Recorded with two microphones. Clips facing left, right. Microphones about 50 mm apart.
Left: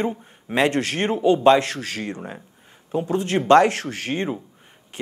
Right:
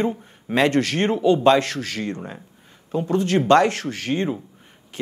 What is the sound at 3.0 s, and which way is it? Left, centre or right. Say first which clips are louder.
Speech: right 2 dB; left.